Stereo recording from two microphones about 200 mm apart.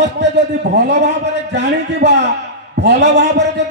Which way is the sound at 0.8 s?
60° right (ahead or behind).